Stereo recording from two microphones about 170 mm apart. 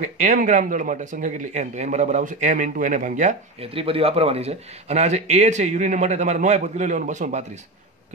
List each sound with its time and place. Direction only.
0.0 s speech: 45° right (ahead or behind)